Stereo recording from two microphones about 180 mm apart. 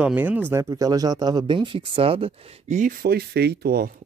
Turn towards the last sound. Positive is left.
turn(degrees=-60)  # may be behind; listen again after turning